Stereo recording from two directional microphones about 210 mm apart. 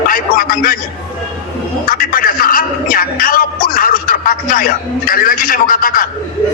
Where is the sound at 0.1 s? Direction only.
40° left (ahead or behind).